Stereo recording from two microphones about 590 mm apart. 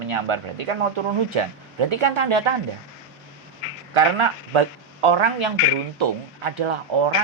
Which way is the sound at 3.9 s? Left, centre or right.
Right.